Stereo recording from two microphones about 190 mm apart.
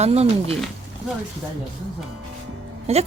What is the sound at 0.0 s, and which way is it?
Speech, 35° right (ahead or behind).